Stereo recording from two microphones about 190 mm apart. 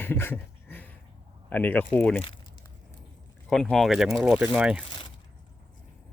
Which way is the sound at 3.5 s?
Centre (ahead or behind).